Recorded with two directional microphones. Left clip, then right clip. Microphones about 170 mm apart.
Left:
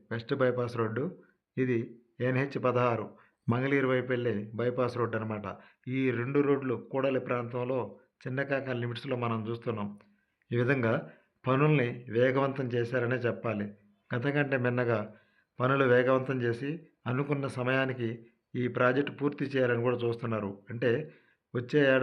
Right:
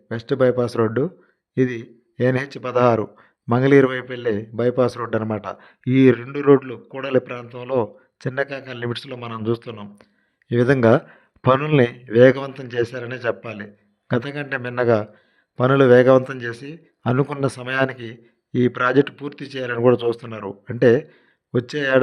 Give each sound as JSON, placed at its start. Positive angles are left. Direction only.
{"t": 0.1, "sound": "a man's voice", "side_deg": -40}